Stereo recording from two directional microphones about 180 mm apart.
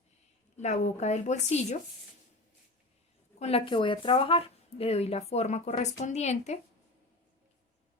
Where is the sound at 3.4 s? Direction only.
30° left (ahead or behind).